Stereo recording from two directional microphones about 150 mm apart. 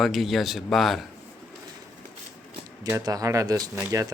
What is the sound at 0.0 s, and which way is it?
Speech, centre (ahead or behind).